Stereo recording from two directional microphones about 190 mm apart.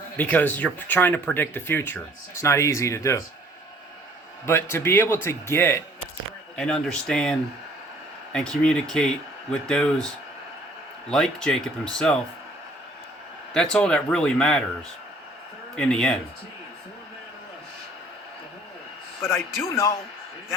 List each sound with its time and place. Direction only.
0.2 s speech: 10° left (ahead or behind)
4.4 s speech: 15° left (ahead or behind)
11.1 s speech: 5° left (ahead or behind)
13.7 s speech: 5° left (ahead or behind)
15.7 s speech: 5° left (ahead or behind)
19.6 s speech: 15° left (ahead or behind)